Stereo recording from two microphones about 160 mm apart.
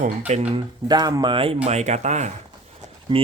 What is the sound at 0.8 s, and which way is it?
Speech, 25° right (ahead or behind).